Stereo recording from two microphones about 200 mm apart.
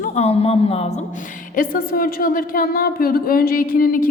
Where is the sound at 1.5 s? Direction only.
45° left (ahead or behind).